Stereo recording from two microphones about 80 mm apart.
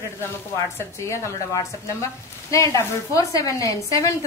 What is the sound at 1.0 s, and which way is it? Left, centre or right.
Speech, left.